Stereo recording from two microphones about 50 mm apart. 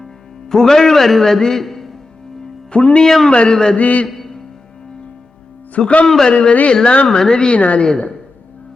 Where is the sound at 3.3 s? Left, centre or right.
Centre.